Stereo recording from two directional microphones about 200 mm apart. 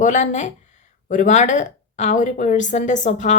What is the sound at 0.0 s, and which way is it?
A woman's voice, 40° left (ahead or behind).